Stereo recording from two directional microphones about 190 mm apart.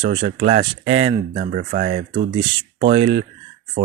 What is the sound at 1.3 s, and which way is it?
Speech, 45° right (ahead or behind).